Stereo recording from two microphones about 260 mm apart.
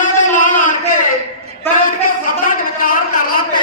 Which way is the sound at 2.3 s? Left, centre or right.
Left.